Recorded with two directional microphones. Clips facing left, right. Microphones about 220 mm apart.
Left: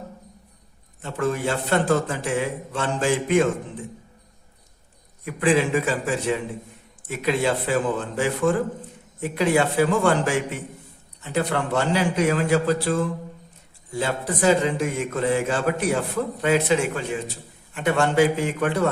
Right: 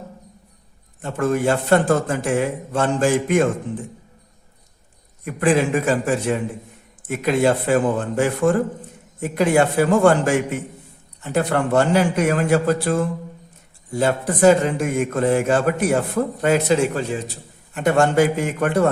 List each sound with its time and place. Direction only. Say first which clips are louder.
1.0 s a man's voice: right 5 dB; 50° right (ahead or behind)
5.2 s a man's voice: right 2 dB; 45° right (ahead or behind)
14.0 s a man's voice: right 7 dB; 50° right (ahead or behind)